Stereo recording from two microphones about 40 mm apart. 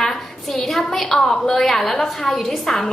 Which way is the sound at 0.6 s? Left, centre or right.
Centre.